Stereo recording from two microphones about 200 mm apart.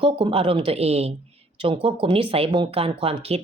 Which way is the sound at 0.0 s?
25° right (ahead or behind).